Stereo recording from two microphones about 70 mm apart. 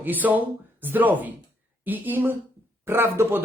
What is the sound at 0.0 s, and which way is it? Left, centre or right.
Speech, right.